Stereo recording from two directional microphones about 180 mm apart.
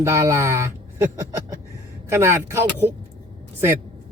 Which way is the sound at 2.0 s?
15° right (ahead or behind).